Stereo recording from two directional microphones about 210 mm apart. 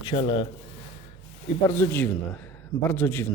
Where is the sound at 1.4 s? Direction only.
15° left (ahead or behind).